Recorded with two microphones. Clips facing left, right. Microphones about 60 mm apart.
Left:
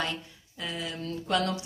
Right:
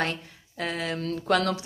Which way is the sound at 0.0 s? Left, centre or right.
Right.